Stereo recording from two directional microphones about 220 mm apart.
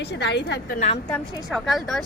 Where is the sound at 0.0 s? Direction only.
50° left (ahead or behind).